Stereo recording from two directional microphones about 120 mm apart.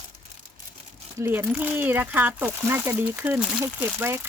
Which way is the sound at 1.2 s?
15° right (ahead or behind).